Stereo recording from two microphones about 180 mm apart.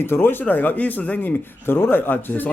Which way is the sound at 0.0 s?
10° left (ahead or behind).